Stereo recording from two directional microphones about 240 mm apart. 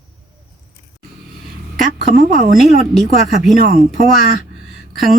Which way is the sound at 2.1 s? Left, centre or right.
Right.